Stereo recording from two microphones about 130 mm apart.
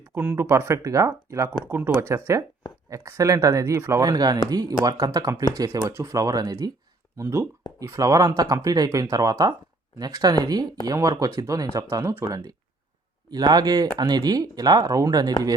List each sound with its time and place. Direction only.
0.1 s speech: 15° right (ahead or behind)